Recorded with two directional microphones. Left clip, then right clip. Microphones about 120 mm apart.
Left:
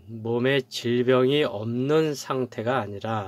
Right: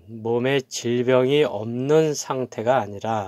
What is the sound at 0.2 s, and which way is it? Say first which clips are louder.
Speech: right 2 dB; 25° right (ahead or behind).